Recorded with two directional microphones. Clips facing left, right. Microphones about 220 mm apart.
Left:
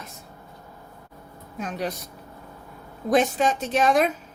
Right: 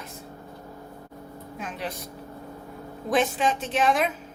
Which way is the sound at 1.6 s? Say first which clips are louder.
Left 6 dB; 40° left (ahead or behind).